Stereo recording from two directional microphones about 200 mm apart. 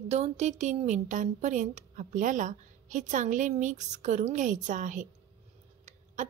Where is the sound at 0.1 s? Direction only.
35° right (ahead or behind).